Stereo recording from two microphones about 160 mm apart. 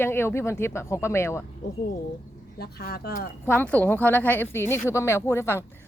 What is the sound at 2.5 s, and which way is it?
Speech, 75° left (ahead or behind).